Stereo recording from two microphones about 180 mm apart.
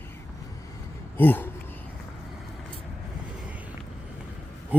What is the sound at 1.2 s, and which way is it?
Speech, 10° left (ahead or behind).